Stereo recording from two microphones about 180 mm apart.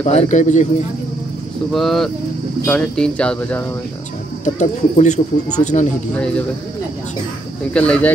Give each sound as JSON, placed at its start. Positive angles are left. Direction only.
{"t": 0.0, "sound": "a man's voice", "side_deg": 40}
{"t": 1.7, "sound": "speech", "side_deg": 0}
{"t": 4.6, "sound": "a man's voice", "side_deg": 40}
{"t": 6.1, "sound": "speech", "side_deg": 5}
{"t": 7.7, "sound": "speech", "side_deg": 5}